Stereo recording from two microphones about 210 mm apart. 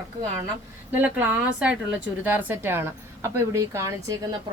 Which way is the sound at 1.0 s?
10° right (ahead or behind).